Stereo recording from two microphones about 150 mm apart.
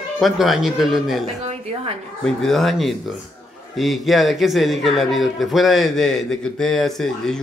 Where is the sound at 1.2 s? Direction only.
45° right (ahead or behind).